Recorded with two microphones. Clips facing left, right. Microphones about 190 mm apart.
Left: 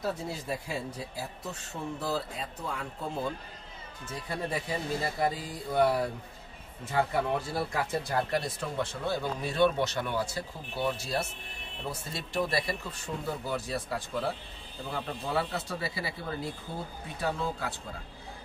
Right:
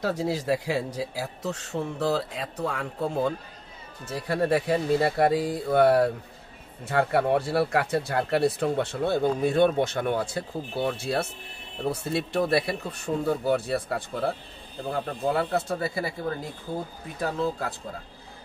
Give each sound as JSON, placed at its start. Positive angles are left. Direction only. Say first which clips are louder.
{"t": 0.0, "sound": "a man's voice", "louder": "right 7 dB", "side_deg": -85}
{"t": 4.1, "sound": "speech", "louder": "right 10 dB", "side_deg": -70}
{"t": 17.2, "sound": "speech", "louder": "right 5 dB", "side_deg": -40}